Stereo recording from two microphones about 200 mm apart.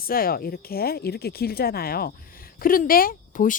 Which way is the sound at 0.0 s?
45° left (ahead or behind).